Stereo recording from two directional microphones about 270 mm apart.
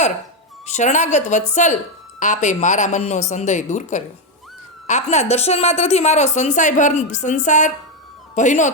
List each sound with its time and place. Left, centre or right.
0.7 s a woman's voice: left